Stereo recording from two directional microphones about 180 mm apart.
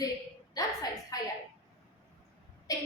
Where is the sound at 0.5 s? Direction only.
20° left (ahead or behind).